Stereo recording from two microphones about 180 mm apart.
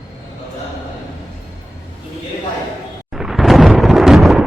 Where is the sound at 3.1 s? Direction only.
Centre (ahead or behind).